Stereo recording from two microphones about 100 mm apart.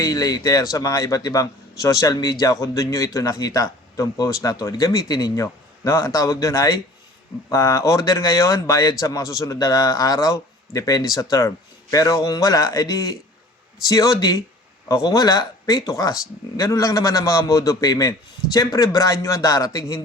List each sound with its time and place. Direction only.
0.0 s a man's voice: 40° left (ahead or behind)